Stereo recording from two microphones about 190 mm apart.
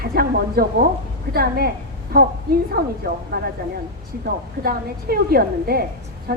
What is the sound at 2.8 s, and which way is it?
A woman's voice, 55° right (ahead or behind).